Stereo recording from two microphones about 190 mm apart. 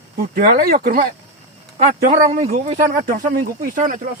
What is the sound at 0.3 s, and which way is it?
Speech, 55° right (ahead or behind).